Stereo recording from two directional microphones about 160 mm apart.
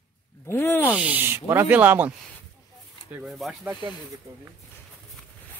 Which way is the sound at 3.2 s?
Centre (ahead or behind).